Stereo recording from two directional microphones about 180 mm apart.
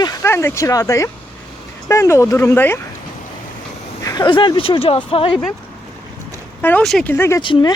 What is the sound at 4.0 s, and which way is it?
Speech, 20° left (ahead or behind).